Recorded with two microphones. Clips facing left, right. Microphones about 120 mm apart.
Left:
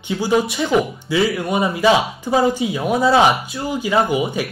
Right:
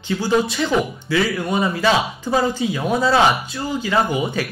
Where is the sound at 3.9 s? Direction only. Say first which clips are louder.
Left 2 dB; 10° left (ahead or behind).